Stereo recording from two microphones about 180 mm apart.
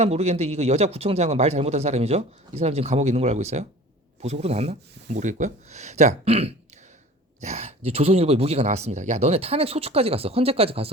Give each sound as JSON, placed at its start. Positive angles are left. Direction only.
{"t": 0.0, "sound": "speech", "side_deg": -35}